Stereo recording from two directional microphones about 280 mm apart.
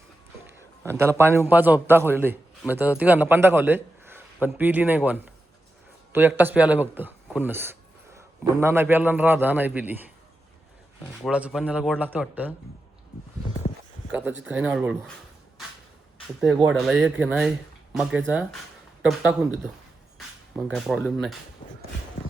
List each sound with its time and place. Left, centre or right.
0.9 s a man's voice: centre
11.3 s speech: centre
14.1 s speech: centre
16.4 s speech: centre
20.1 s speech: centre
21.6 s a sound: centre